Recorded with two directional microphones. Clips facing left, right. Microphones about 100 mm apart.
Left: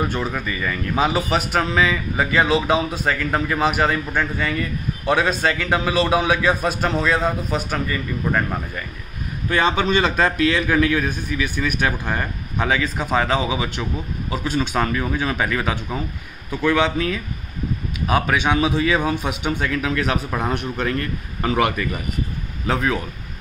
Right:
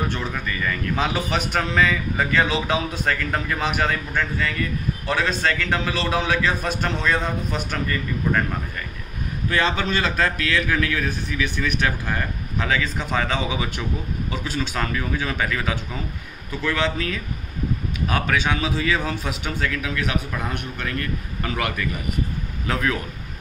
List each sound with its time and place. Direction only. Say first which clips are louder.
0.1 s a man's voice: left 3 dB; 10° left (ahead or behind)
9.5 s a man's voice: left 4 dB; 20° left (ahead or behind)
14.3 s a man's voice: left 6 dB; 20° left (ahead or behind)
20.0 s a man's voice: left 4 dB; 35° left (ahead or behind)